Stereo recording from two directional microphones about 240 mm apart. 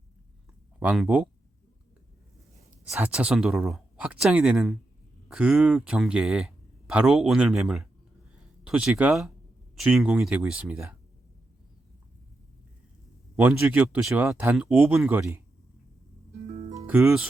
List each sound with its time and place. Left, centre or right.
0.8 s speech: centre
2.8 s speech: centre
13.3 s speech: centre
16.5 s music: right
16.8 s speech: centre